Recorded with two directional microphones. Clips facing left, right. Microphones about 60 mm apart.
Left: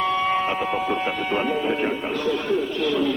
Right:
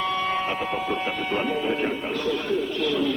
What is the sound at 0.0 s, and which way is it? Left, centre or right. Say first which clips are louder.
Speech: left 4 dB; centre.